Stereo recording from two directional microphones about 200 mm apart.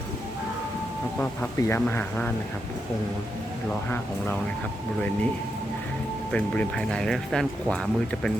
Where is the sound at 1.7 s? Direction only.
10° left (ahead or behind).